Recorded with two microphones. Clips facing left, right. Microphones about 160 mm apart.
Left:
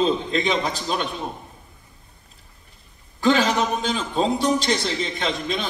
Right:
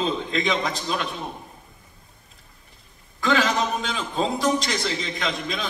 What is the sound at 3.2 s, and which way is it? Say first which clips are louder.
A man's voice: left 3 dB; 35° left (ahead or behind).